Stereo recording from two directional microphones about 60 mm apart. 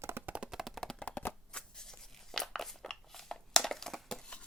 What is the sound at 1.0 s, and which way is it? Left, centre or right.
Shuffling cards, centre.